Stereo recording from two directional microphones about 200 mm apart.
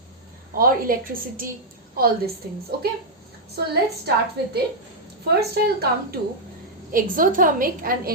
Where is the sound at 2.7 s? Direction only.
50° right (ahead or behind).